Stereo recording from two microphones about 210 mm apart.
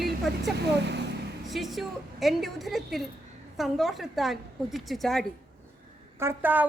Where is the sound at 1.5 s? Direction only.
Centre (ahead or behind).